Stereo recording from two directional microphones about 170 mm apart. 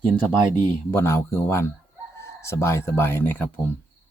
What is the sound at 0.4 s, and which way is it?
Speech, 25° right (ahead or behind).